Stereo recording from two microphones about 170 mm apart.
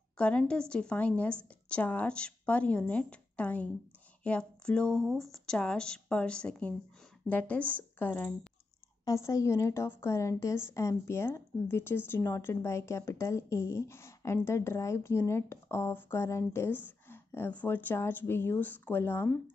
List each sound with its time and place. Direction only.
0.2 s speech: 5° left (ahead or behind)